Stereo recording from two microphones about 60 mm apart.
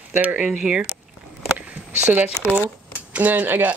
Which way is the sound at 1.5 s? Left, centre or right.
Right.